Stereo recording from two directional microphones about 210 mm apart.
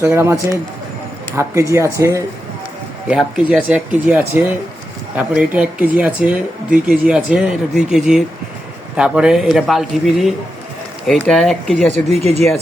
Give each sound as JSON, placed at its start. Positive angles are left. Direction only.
{"t": 0.0, "sound": "speech", "side_deg": -10}
{"t": 3.1, "sound": "speech", "side_deg": 0}
{"t": 12.1, "sound": "speech", "side_deg": -30}